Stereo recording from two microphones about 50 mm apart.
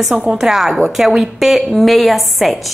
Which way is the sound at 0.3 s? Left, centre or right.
Centre.